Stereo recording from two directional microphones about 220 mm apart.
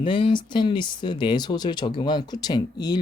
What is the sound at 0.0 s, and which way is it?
Speech, 25° left (ahead or behind).